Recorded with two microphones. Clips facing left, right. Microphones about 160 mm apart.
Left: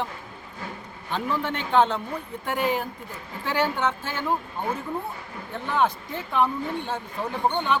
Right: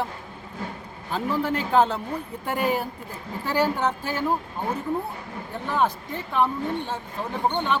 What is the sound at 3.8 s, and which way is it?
Speech, 35° right (ahead or behind).